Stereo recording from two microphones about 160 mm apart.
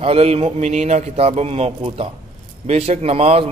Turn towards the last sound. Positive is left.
turn(degrees=-40)  # may be behind; listen again after turning